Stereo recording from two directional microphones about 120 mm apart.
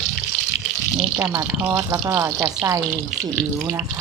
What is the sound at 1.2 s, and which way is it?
Speech, 20° right (ahead or behind).